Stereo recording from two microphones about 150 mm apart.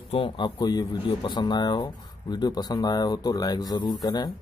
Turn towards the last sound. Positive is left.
turn(degrees=25)  # may be behind; listen again after turning